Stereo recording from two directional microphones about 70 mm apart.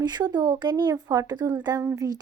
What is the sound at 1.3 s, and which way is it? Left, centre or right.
Speech, right.